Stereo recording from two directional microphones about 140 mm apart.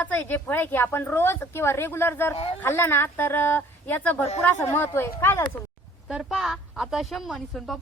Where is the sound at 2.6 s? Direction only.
15° left (ahead or behind).